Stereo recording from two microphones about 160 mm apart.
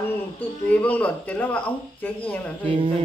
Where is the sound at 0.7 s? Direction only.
10° left (ahead or behind).